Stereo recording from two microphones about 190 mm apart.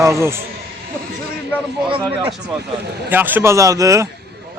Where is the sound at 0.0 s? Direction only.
15° right (ahead or behind).